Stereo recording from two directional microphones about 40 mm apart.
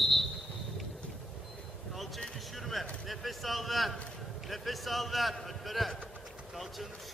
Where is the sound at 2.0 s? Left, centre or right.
Centre.